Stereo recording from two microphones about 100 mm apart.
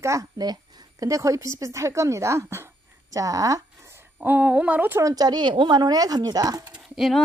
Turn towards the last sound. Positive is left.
turn(degrees=-5)  # may be behind; listen again after turning